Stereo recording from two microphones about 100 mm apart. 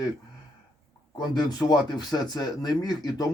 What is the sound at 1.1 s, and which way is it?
Speech, 45° left (ahead or behind).